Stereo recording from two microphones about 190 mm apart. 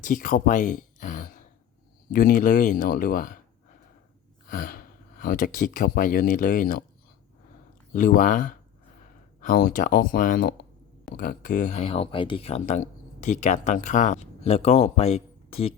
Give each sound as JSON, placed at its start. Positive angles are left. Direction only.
{"t": 0.1, "sound": "speech", "side_deg": 45}
{"t": 4.4, "sound": "speech", "side_deg": 45}
{"t": 7.9, "sound": "speech", "side_deg": 45}